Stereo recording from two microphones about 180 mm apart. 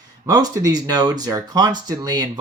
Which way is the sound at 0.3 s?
20° right (ahead or behind).